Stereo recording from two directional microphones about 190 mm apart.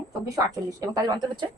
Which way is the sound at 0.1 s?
15° right (ahead or behind).